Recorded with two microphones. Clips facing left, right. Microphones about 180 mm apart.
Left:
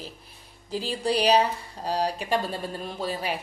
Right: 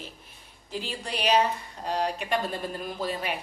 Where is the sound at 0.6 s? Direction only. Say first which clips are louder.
Left 7 dB; 35° left (ahead or behind).